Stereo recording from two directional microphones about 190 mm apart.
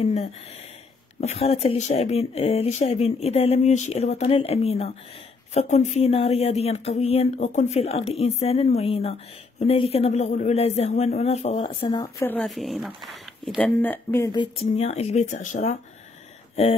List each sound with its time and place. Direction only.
0.0 s speech: 35° left (ahead or behind)
12.0 s a woman's voice: 10° left (ahead or behind)
12.4 s speech: centre (ahead or behind)
14.3 s speech: 30° left (ahead or behind)